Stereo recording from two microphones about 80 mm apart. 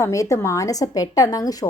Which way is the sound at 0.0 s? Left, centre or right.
Left.